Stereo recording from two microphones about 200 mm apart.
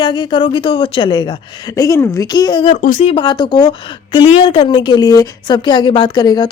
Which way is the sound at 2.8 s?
35° left (ahead or behind).